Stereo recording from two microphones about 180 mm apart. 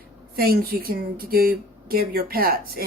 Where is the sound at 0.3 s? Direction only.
55° right (ahead or behind).